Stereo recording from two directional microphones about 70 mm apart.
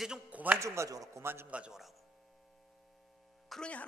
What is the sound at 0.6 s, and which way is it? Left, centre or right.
Speech, right.